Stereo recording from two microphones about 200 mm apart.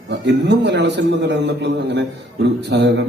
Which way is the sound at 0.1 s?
60° right (ahead or behind).